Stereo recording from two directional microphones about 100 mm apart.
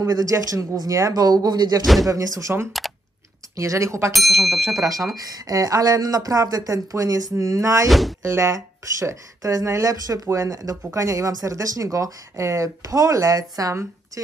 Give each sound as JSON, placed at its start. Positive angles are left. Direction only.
{"t": 0.0, "sound": "speech", "side_deg": -35}
{"t": 4.1, "sound": "speech", "side_deg": 0}
{"t": 4.7, "sound": "speech", "side_deg": -30}
{"t": 7.9, "sound": "speech", "side_deg": 0}
{"t": 8.2, "sound": "speech", "side_deg": -30}